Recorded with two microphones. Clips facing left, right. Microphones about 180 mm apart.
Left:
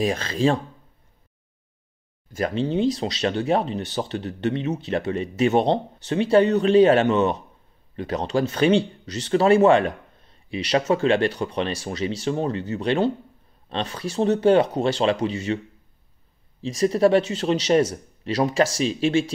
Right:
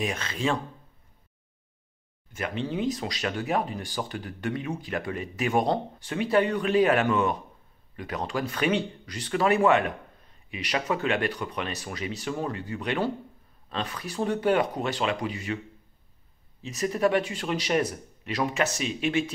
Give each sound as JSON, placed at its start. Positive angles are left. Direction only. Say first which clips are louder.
{"t": 0.0, "sound": "speech", "louder": "left 7 dB", "side_deg": 35}
{"t": 2.3, "sound": "speech", "louder": "left 7 dB", "side_deg": 35}
{"t": 16.6, "sound": "speech", "louder": "left 7 dB", "side_deg": 30}